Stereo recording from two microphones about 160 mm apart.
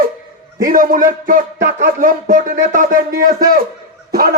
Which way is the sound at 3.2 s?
65° right (ahead or behind).